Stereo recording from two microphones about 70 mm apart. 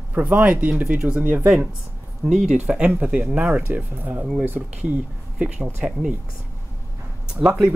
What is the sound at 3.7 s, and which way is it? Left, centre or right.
Speech, right.